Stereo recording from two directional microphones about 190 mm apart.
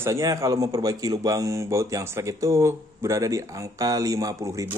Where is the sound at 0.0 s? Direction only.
15° right (ahead or behind).